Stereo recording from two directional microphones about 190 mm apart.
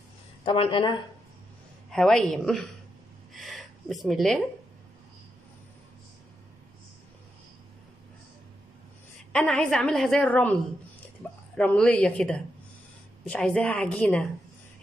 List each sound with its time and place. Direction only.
0.5 s speech: 25° left (ahead or behind)
1.9 s a woman's voice: 5° left (ahead or behind)
3.3 s a sound: centre (ahead or behind)
9.3 s a woman's voice: 5° left (ahead or behind)